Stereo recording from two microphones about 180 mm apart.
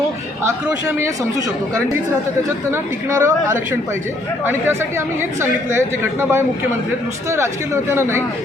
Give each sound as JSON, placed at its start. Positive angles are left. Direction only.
{"t": 0.9, "sound": "a woman's voice", "side_deg": -15}